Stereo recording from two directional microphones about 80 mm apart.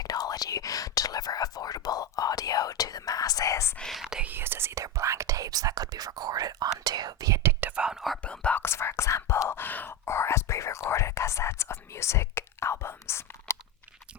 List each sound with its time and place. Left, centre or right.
0.0 s whispering: left
3.8 s whispering: centre
4.2 s whispering: right
4.8 s whispering: right
7.8 s whispering: centre
8.2 s whispering: centre
8.6 s whispering: left